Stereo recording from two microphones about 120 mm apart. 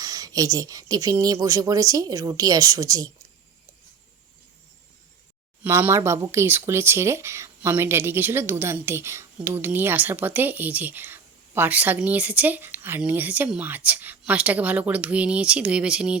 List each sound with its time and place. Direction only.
0.0 s speech: 30° right (ahead or behind)
5.6 s speech: 20° right (ahead or behind)